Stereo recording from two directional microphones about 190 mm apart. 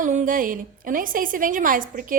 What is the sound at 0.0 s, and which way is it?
A woman's voice, 40° right (ahead or behind).